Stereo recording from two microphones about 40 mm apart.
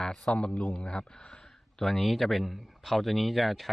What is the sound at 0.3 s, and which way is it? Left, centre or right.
Speech, left.